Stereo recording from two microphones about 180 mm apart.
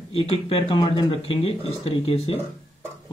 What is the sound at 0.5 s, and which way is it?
Speech, 30° left (ahead or behind).